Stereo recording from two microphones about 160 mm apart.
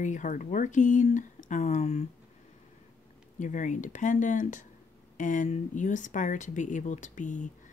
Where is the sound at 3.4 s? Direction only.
50° left (ahead or behind).